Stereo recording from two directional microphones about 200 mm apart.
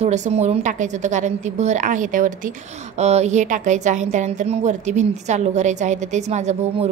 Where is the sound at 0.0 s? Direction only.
35° right (ahead or behind).